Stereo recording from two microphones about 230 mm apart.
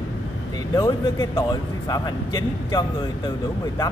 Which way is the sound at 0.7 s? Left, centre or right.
Centre.